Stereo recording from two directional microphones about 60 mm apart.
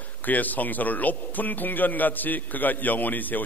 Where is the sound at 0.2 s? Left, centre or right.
Left.